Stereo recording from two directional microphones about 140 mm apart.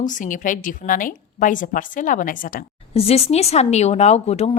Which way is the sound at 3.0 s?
45° left (ahead or behind).